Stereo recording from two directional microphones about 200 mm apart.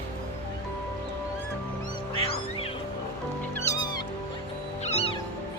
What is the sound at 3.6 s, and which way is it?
Cat, 15° left (ahead or behind).